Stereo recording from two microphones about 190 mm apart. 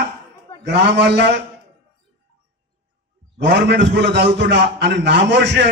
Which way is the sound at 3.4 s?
65° right (ahead or behind).